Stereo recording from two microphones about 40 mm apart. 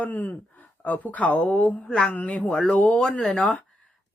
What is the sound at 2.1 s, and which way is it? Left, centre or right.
Speech, left.